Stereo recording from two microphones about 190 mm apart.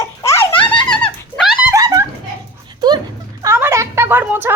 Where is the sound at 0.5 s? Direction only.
25° left (ahead or behind).